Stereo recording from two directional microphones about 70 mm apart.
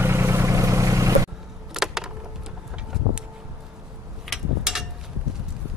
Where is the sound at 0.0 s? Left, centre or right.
Right.